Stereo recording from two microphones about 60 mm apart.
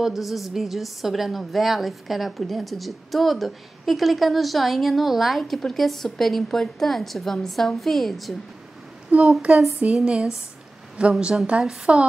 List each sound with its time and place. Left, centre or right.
0.0 s a woman's voice: centre
9.1 s a woman's voice: right